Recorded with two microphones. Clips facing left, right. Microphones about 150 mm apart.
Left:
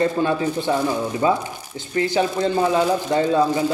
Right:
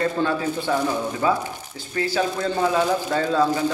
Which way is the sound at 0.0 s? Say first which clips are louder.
Left 3 dB; 20° left (ahead or behind).